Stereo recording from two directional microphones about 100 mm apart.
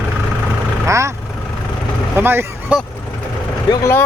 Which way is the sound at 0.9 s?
30° right (ahead or behind).